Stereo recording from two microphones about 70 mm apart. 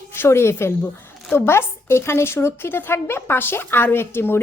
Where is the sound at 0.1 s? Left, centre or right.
Left.